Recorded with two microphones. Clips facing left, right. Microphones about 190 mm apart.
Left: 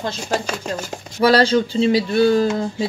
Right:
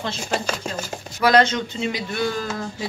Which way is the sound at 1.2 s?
30° left (ahead or behind).